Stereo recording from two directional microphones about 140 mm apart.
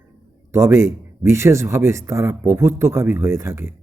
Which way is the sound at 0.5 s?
20° right (ahead or behind).